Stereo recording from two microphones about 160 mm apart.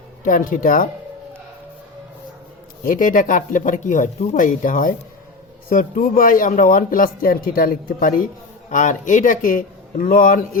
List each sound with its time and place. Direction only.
0.3 s a man's voice: 60° left (ahead or behind)
2.8 s a man's voice: 55° left (ahead or behind)